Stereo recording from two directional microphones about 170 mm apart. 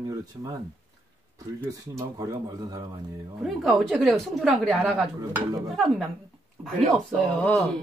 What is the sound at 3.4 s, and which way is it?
A woman's voice, centre (ahead or behind).